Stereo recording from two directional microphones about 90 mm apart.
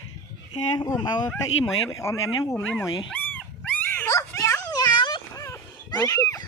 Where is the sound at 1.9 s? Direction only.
35° left (ahead or behind).